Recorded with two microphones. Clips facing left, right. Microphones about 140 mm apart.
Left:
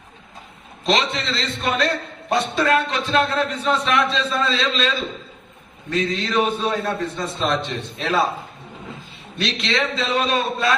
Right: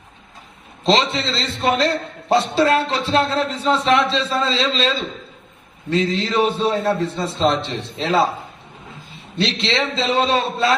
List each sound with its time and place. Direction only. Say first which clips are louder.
0.9 s a man's voice: right 3 dB; 30° right (ahead or behind)
9.4 s a man's voice: right 2 dB; 30° right (ahead or behind)